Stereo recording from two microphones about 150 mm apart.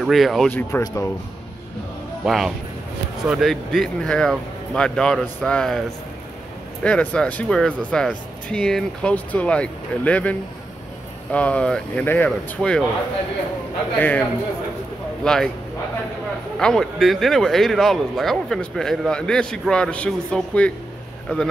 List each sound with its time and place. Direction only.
0.0 s speech: centre (ahead or behind)
0.5 s speech: 15° left (ahead or behind)
2.2 s speech: centre (ahead or behind)
11.3 s speech: 10° left (ahead or behind)
13.9 s speech: 10° left (ahead or behind)
15.2 s speech: 5° left (ahead or behind)
16.5 s speech: 5° left (ahead or behind)